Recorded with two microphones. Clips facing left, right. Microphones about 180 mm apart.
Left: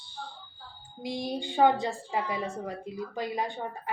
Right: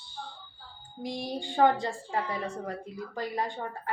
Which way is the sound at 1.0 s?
20° left (ahead or behind).